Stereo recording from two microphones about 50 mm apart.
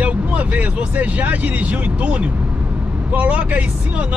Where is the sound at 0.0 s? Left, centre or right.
Right.